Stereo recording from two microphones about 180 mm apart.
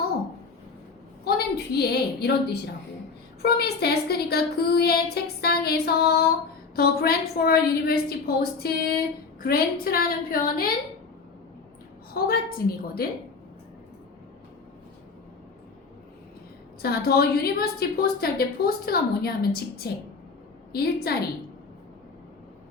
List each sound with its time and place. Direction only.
1.2 s a woman's voice: 60° left (ahead or behind)
12.1 s a woman's voice: 55° left (ahead or behind)
16.8 s a woman's voice: 60° left (ahead or behind)